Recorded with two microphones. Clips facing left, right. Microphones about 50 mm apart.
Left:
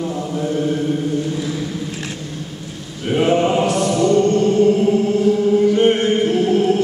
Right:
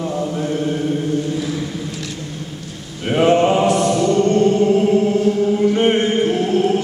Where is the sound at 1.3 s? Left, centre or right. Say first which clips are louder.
Right 1 dB; centre.